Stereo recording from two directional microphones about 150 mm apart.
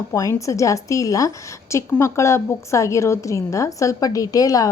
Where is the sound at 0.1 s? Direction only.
20° left (ahead or behind).